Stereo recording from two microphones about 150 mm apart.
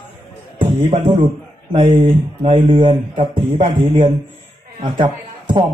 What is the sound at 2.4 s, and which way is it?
A man's voice, 35° right (ahead or behind).